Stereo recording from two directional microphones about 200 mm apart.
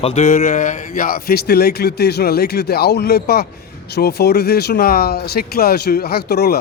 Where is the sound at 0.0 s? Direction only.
35° left (ahead or behind).